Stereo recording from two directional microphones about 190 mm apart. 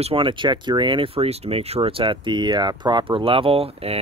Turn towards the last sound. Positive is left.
turn(degrees=-30)  # may be behind; listen again after turning